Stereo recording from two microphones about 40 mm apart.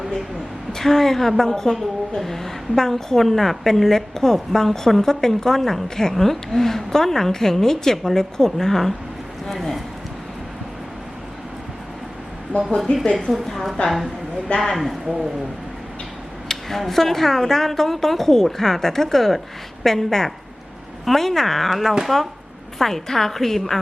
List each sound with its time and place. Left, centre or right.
0.7 s a woman's voice: centre
12.5 s speech: left
13.3 s speech: centre
16.5 s a woman's voice: centre